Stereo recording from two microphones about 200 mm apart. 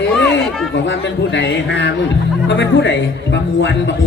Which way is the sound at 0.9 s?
65° left (ahead or behind).